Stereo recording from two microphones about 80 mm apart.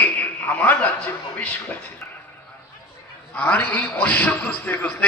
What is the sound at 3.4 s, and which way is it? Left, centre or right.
A man's voice, left.